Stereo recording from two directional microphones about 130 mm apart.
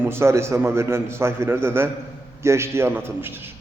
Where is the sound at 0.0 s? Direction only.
20° right (ahead or behind).